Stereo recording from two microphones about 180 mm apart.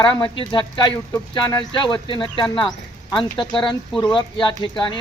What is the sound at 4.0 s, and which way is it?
Speech, 25° left (ahead or behind).